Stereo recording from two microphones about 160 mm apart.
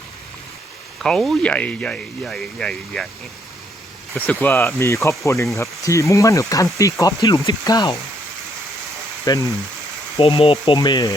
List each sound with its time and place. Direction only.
1.0 s speech: 5° left (ahead or behind)
4.3 s speech: 10° left (ahead or behind)
9.3 s speech: 25° left (ahead or behind)
10.2 s speech: 35° left (ahead or behind)